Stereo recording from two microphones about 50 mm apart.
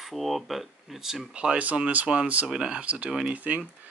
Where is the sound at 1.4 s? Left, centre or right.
Centre.